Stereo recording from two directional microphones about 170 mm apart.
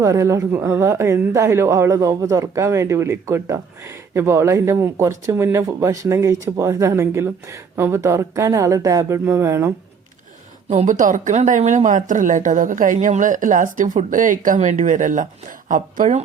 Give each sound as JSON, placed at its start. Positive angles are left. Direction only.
{"t": 0.0, "sound": "speech", "side_deg": -20}
{"t": 10.7, "sound": "speech", "side_deg": -45}